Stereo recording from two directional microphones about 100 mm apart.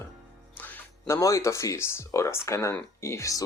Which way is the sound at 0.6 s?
20° left (ahead or behind).